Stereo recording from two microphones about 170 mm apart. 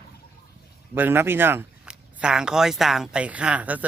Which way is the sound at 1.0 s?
15° right (ahead or behind).